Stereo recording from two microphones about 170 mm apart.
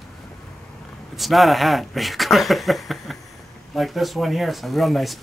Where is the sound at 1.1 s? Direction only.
Centre (ahead or behind).